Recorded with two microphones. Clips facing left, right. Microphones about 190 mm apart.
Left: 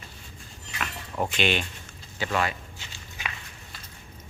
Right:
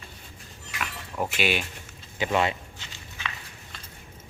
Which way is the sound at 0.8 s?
5° right (ahead or behind).